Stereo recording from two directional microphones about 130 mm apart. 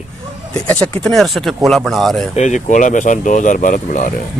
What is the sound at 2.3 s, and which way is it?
Speech, 65° left (ahead or behind).